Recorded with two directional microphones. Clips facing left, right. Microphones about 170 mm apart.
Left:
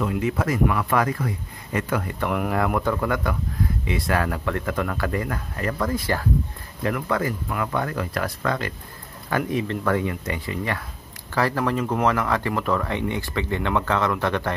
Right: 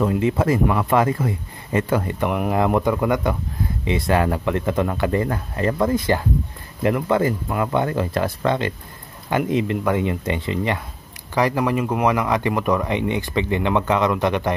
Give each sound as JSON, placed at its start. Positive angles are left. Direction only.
{"t": 0.0, "sound": "speech", "side_deg": -25}